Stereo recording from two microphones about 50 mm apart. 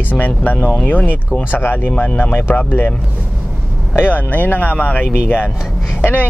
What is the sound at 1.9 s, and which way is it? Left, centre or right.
Speech, left.